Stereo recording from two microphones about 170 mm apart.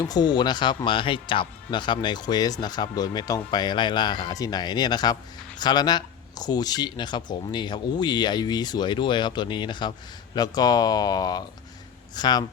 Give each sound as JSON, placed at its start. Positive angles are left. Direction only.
{"t": 0.0, "sound": "speech", "side_deg": 25}